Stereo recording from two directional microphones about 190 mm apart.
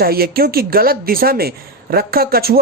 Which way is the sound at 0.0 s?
55° right (ahead or behind).